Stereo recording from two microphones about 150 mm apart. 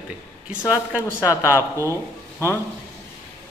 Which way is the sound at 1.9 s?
15° left (ahead or behind).